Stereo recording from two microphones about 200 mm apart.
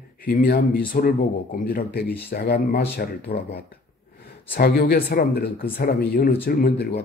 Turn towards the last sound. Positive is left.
turn(degrees=50)  # may be behind; listen again after turning